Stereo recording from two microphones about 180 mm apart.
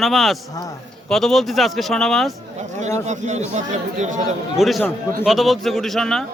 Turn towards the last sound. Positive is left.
turn(degrees=0)  # may be behind; listen again after turning